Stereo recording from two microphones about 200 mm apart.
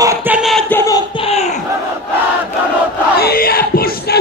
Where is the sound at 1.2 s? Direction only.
30° left (ahead or behind).